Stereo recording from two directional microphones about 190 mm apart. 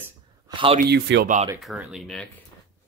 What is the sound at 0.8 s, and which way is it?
Speech, 65° right (ahead or behind).